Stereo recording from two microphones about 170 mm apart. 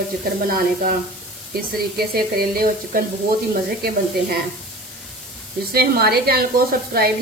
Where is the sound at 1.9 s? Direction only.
65° right (ahead or behind).